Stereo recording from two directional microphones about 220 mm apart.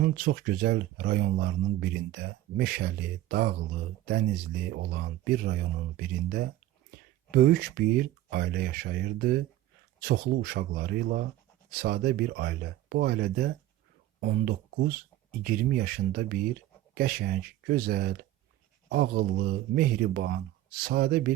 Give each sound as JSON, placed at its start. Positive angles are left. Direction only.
{"t": 0.0, "sound": "speech", "side_deg": -45}
{"t": 4.7, "sound": "speech", "side_deg": -45}